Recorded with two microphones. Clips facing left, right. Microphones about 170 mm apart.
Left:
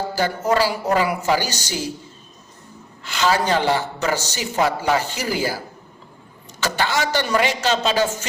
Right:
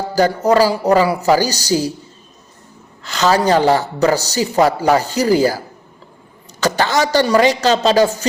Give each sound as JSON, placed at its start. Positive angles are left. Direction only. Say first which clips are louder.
{"t": 0.2, "sound": "speech", "louder": "right 7 dB", "side_deg": -40}
{"t": 3.0, "sound": "speech", "louder": "right 5 dB", "side_deg": -40}